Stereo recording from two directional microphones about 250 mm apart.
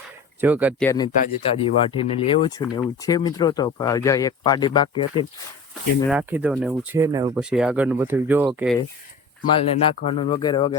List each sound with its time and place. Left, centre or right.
0.4 s speech: centre
0.8 s speech: centre
1.2 s speech: left
6.1 s speech: centre
7.3 s speech: centre
9.4 s speech: left